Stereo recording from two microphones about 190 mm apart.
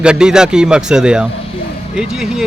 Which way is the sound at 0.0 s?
5° right (ahead or behind).